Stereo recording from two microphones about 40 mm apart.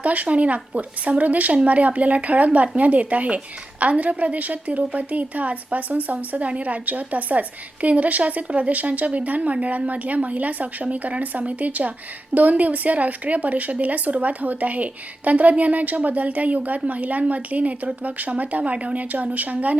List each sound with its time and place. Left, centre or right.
0.0 s speech: right